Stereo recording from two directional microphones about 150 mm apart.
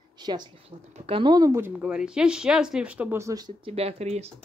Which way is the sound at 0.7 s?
40° right (ahead or behind).